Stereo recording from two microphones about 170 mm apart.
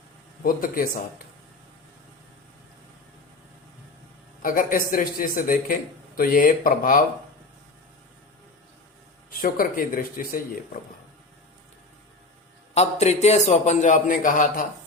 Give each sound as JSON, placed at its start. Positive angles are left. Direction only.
{"t": 0.4, "sound": "speech", "side_deg": 55}
{"t": 4.4, "sound": "speech", "side_deg": 55}
{"t": 9.3, "sound": "speech", "side_deg": 55}
{"t": 12.7, "sound": "a man's voice", "side_deg": 40}